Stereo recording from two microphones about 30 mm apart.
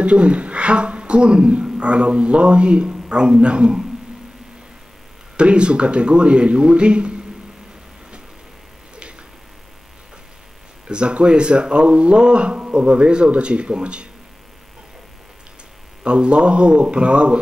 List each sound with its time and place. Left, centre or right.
0.0 s a man's voice: right
5.4 s a man's voice: right
10.9 s a man's voice: right
16.0 s a man's voice: right